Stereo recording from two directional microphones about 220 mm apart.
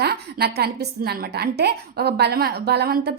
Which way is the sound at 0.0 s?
45° right (ahead or behind).